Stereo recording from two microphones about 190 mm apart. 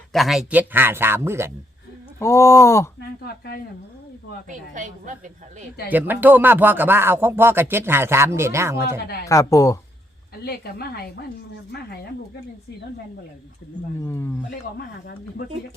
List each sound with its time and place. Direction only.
0.1 s speech: centre (ahead or behind)
2.1 s speech: 15° left (ahead or behind)
4.4 s a woman's voice: 40° right (ahead or behind)
5.9 s speech: 10° right (ahead or behind)
9.2 s speech: 15° left (ahead or behind)
10.3 s a woman's voice: 55° left (ahead or behind)
14.0 s speech: 15° left (ahead or behind)
14.8 s a woman's voice: 55° left (ahead or behind)